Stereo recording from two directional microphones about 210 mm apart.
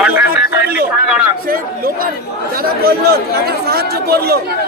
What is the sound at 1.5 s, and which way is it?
Speech, 45° right (ahead or behind).